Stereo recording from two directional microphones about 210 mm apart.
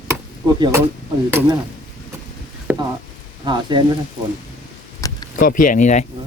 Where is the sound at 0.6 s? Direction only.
15° right (ahead or behind).